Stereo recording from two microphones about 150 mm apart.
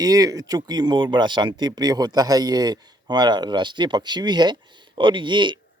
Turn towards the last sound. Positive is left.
turn(degrees=-30)  # may be behind; listen again after turning